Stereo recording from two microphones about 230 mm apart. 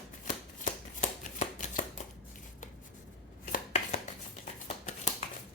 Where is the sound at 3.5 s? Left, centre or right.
Left.